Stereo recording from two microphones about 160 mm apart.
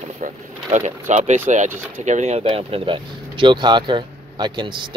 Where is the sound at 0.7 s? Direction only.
50° right (ahead or behind).